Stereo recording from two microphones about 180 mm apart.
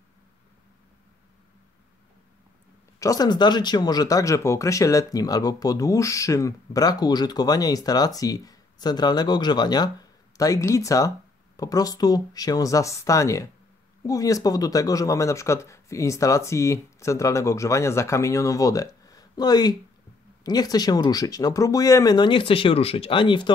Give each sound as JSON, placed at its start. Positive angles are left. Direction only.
{"t": 3.0, "sound": "speech", "side_deg": 20}